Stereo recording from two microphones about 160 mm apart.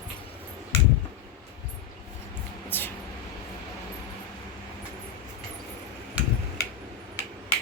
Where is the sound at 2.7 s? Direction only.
15° left (ahead or behind).